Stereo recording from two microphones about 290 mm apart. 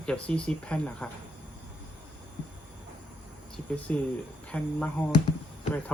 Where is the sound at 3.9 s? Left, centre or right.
Centre.